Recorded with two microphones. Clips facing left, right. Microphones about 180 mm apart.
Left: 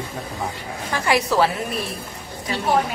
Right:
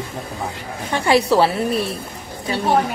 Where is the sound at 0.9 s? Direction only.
30° right (ahead or behind).